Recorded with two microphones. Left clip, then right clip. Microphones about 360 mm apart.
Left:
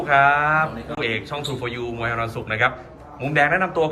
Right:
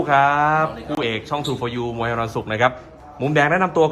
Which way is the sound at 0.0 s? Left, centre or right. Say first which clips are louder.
Right 1 dB; centre.